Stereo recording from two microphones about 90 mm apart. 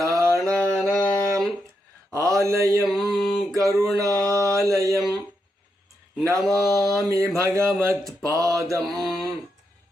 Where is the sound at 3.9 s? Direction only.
40° right (ahead or behind).